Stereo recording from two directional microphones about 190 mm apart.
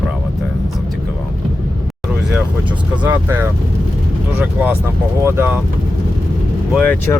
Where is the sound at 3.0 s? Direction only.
10° right (ahead or behind).